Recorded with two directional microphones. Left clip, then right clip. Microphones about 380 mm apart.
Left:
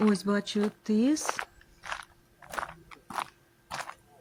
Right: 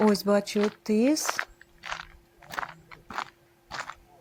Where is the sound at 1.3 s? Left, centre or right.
Left.